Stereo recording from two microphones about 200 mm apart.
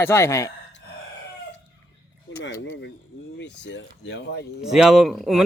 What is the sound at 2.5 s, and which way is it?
Speech, 60° left (ahead or behind).